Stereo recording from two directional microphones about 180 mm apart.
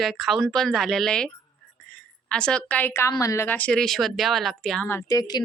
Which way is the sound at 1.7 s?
5° left (ahead or behind).